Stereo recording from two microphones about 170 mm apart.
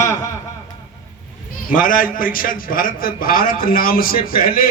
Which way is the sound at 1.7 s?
55° left (ahead or behind).